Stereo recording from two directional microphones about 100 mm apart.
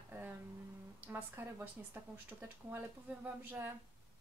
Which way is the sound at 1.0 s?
20° right (ahead or behind).